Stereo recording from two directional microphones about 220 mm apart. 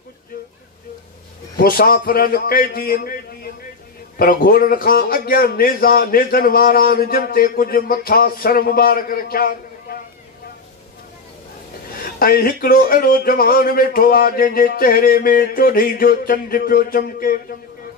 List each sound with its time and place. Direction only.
1.6 s a man's voice: 40° left (ahead or behind)
4.2 s a man's voice: 40° left (ahead or behind)
11.9 s a man's voice: 40° left (ahead or behind)